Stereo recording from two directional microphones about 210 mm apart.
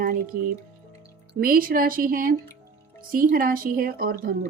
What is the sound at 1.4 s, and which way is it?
Speech, 40° right (ahead or behind).